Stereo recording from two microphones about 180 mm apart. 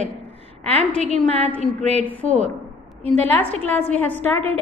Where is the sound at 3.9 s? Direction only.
10° left (ahead or behind).